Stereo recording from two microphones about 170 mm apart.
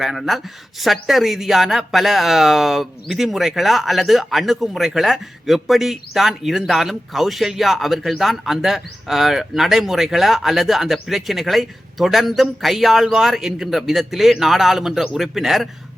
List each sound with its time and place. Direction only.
0.0 s speech: centre (ahead or behind)